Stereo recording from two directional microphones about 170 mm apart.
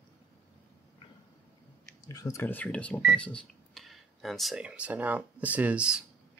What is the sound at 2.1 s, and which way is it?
Speech, 20° left (ahead or behind).